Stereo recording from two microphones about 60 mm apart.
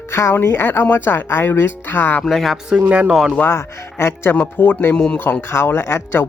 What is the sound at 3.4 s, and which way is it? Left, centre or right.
Speech, left.